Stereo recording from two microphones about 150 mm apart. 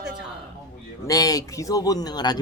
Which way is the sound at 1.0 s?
25° left (ahead or behind).